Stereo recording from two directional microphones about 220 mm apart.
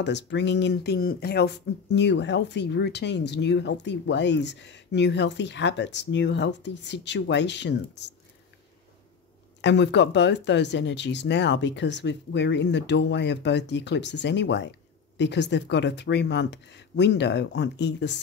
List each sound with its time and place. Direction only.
0.0 s speech: 50° left (ahead or behind)
9.6 s speech: 50° left (ahead or behind)